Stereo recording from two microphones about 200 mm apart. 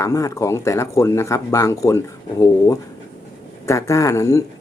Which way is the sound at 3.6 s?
15° left (ahead or behind).